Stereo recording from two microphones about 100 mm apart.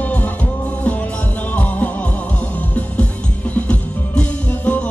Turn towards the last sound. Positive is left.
turn(degrees=15)  # may be behind; listen again after turning